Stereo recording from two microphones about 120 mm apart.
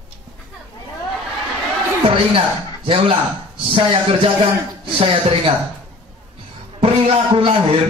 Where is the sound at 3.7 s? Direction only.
50° right (ahead or behind).